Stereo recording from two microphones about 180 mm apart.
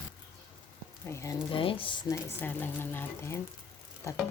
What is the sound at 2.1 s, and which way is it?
Speech, 10° left (ahead or behind).